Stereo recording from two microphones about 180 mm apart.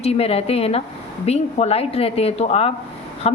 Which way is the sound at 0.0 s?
35° left (ahead or behind).